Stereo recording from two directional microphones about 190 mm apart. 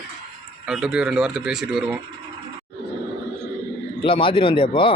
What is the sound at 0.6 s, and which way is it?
A man's voice, centre (ahead or behind).